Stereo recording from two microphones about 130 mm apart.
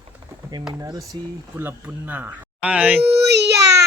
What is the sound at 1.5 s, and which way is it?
Speech, 15° right (ahead or behind).